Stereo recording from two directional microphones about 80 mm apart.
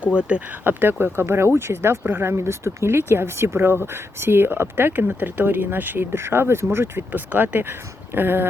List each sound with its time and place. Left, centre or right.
0.1 s speech: centre